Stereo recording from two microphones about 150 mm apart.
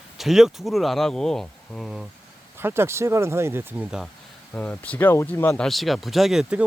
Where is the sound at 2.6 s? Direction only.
15° right (ahead or behind).